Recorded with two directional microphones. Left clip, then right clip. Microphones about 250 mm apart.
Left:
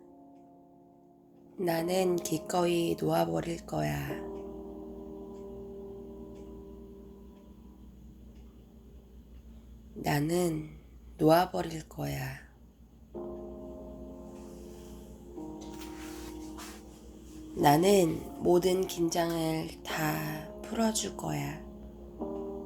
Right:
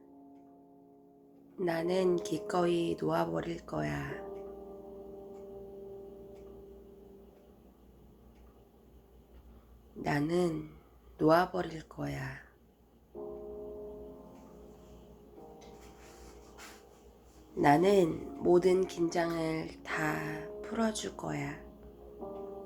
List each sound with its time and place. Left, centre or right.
1.5 s speech: centre
10.0 s a man's voice: left
17.6 s speech: centre